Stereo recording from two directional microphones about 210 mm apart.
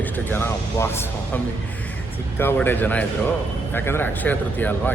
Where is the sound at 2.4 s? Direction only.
10° left (ahead or behind).